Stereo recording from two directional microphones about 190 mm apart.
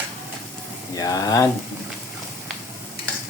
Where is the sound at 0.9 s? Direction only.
20° left (ahead or behind).